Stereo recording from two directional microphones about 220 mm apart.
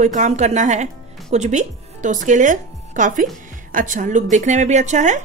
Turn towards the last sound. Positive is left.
turn(degrees=-35)  # may be behind; listen again after turning